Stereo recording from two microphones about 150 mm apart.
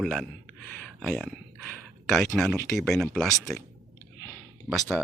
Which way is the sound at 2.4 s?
Centre (ahead or behind).